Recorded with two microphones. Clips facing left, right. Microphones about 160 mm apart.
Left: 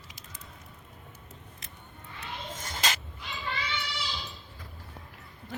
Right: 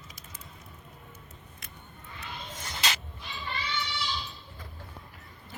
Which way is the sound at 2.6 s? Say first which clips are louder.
Left 1 dB; 45° left (ahead or behind).